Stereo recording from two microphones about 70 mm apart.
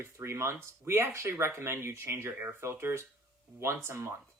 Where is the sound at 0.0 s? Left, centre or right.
Right.